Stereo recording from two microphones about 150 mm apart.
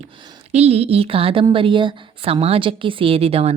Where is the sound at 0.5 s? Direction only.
45° right (ahead or behind).